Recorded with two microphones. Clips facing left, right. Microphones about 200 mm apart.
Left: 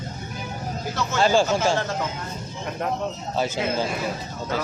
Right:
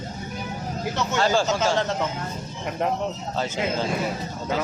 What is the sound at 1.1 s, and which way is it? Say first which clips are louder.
Speech: left 3 dB; 15° left (ahead or behind).